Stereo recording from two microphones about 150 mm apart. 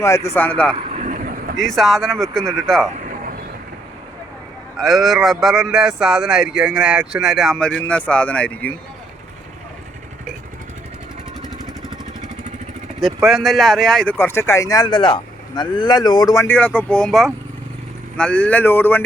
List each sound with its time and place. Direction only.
0.0 s speech: 20° left (ahead or behind)
0.8 s vehicle: 50° right (ahead or behind); by 1.5 s 65° right (ahead or behind)
1.5 s speech: centre (ahead or behind)
4.8 s speech: centre (ahead or behind)
13.2 s speech: centre (ahead or behind)
14.2 s speech: 15° left (ahead or behind)
16.5 s speech: 10° left (ahead or behind)